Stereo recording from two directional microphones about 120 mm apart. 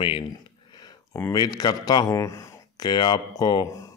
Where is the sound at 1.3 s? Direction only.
35° left (ahead or behind).